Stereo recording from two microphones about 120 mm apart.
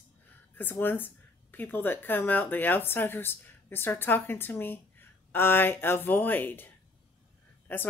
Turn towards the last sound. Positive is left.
turn(degrees=15)  # may be behind; listen again after turning